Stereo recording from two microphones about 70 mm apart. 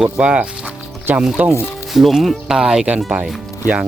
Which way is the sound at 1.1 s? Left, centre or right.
Right.